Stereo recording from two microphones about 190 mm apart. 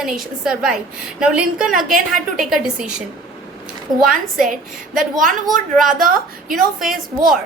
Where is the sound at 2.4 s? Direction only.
5° right (ahead or behind).